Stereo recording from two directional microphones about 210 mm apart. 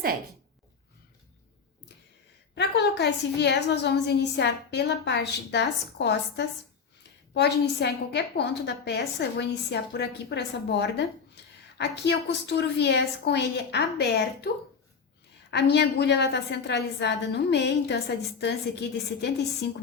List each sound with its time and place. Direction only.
2.6 s a woman's voice: 55° left (ahead or behind)